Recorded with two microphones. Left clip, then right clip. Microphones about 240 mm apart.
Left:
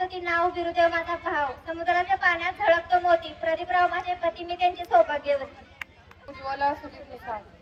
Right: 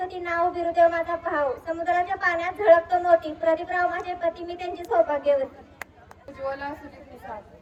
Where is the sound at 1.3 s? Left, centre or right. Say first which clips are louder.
Right 3 dB; right.